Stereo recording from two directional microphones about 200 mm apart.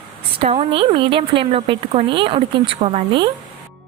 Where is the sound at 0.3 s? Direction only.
30° right (ahead or behind).